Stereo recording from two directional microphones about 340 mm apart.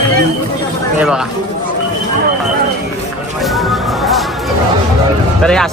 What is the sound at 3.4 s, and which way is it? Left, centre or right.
Music, centre.